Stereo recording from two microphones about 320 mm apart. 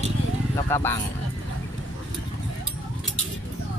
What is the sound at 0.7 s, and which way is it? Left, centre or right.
Speech, centre.